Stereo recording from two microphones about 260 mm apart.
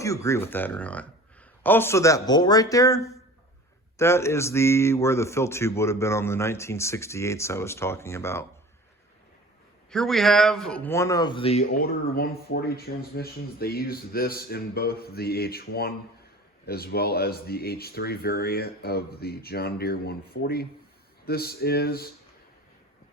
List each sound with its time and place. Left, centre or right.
0.0 s speech: centre
9.9 s speech: centre; by 22.0 s left